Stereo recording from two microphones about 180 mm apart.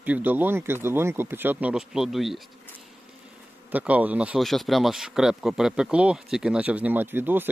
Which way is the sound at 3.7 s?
10° right (ahead or behind).